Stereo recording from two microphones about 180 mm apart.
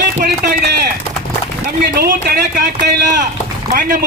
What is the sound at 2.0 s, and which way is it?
Speech, 55° right (ahead or behind).